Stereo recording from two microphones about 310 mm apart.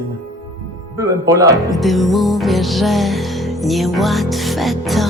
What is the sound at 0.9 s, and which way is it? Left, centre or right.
Speech, centre.